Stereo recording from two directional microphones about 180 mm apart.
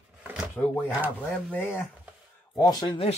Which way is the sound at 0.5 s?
10° left (ahead or behind).